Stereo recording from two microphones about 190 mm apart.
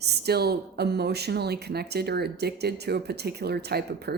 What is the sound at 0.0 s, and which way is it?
A woman's voice, 60° right (ahead or behind).